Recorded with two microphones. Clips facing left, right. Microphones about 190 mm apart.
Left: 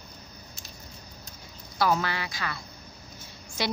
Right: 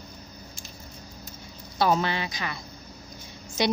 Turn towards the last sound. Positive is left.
turn(degrees=-20)  # may be behind; listen again after turning